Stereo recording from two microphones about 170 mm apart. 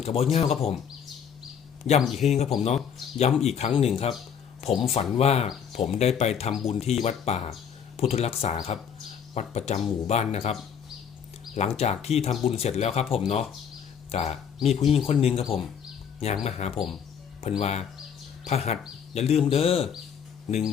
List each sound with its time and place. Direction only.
0.0 s speech: 35° left (ahead or behind)
2.0 s speech: centre (ahead or behind)
2.3 s speech: 40° left (ahead or behind)
11.8 s speech: 40° left (ahead or behind)